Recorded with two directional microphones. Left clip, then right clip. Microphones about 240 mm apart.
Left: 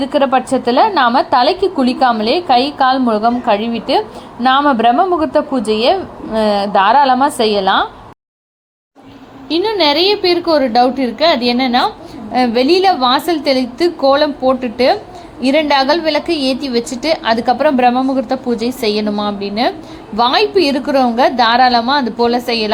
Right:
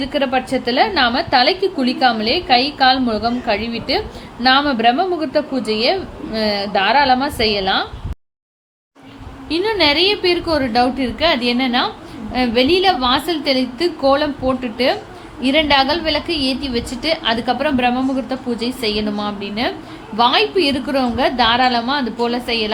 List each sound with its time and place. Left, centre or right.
0.0 s a woman's voice: centre
2.7 s a woman's voice: left
4.4 s a woman's voice: centre
9.5 s a woman's voice: centre